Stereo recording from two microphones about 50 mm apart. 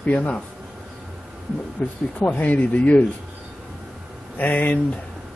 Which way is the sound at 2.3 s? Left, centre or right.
Left.